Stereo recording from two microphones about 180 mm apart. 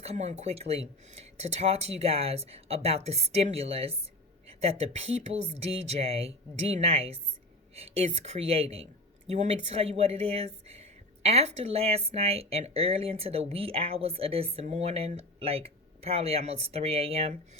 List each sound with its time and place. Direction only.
0.0 s speech: 40° right (ahead or behind)